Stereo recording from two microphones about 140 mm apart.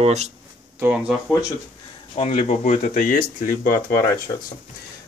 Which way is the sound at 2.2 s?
50° left (ahead or behind).